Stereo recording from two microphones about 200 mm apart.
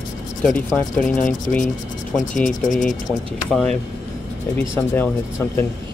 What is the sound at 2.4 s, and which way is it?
Speech, 40° left (ahead or behind).